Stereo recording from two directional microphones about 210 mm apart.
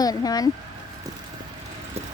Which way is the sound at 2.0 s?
30° right (ahead or behind).